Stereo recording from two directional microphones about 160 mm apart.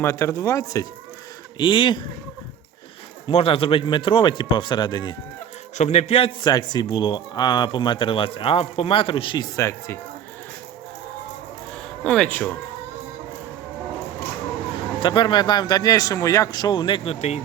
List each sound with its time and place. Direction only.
0.0 s speech: 15° left (ahead or behind)
1.5 s speech: 30° left (ahead or behind)
3.2 s speech: 35° left (ahead or behind)
5.7 s speech: 45° left (ahead or behind)
6.4 s speech: 25° left (ahead or behind)
9.6 s speech: 20° left (ahead or behind)
12.0 s speech: 5° left (ahead or behind)
15.0 s speech: 30° left (ahead or behind)